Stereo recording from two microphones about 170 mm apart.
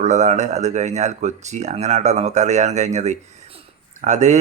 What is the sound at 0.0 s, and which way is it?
Speech, 45° right (ahead or behind).